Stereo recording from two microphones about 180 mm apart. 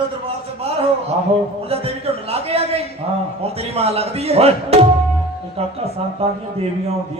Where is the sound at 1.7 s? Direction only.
35° right (ahead or behind).